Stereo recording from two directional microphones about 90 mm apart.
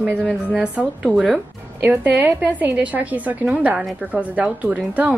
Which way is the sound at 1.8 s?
20° right (ahead or behind).